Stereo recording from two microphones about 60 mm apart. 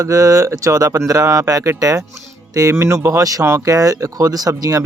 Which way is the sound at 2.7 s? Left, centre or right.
Right.